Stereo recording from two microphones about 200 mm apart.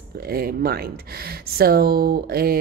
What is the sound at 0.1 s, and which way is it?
A woman's voice, 50° right (ahead or behind).